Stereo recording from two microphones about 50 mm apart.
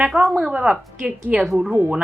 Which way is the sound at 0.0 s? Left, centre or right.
Centre.